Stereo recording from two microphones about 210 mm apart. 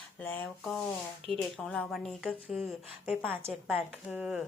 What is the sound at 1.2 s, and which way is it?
Speech, 30° right (ahead or behind).